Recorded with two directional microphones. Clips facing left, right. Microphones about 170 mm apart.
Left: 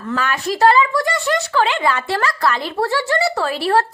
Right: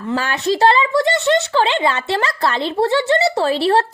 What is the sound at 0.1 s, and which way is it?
Speech, 30° right (ahead or behind).